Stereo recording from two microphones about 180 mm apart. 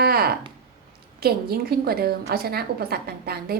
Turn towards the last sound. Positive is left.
turn(degrees=-60)  # may be behind; listen again after turning